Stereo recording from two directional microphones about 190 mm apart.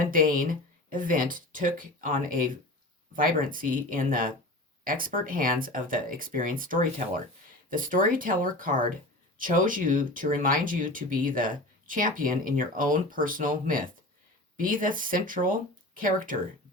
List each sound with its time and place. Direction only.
0.0 s speech: 45° right (ahead or behind)